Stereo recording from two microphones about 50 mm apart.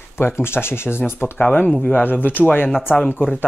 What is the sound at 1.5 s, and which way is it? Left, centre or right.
Speech, left.